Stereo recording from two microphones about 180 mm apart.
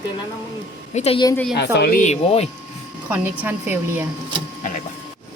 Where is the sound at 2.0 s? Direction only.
35° left (ahead or behind).